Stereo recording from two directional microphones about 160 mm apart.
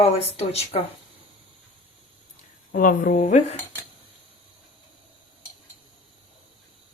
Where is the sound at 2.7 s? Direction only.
60° left (ahead or behind).